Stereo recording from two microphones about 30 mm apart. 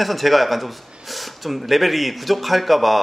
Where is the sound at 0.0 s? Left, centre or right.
Centre.